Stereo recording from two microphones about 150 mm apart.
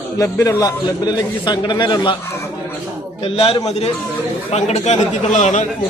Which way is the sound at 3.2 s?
40° left (ahead or behind).